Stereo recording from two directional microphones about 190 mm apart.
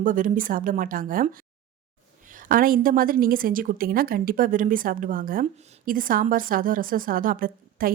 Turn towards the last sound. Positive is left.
turn(degrees=-50)  # may be behind; listen again after turning